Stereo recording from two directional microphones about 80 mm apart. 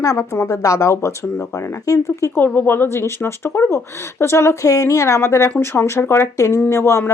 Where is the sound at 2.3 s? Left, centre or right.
Left.